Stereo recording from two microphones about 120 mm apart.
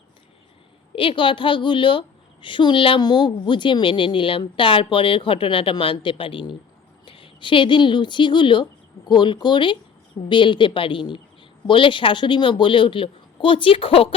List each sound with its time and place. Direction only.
0.9 s a woman's voice: 45° left (ahead or behind)